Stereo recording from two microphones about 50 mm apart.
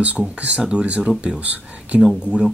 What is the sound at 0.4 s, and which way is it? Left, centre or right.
Speech, right.